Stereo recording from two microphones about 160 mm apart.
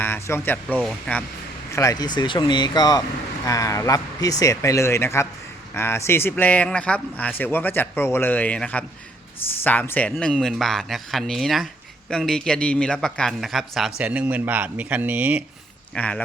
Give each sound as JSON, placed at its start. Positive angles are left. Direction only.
{"t": 0.0, "sound": "a man's voice", "side_deg": 15}
{"t": 1.7, "sound": "a man's voice", "side_deg": 20}
{"t": 16.0, "sound": "speech", "side_deg": 10}